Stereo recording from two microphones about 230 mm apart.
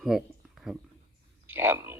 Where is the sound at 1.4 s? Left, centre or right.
Centre.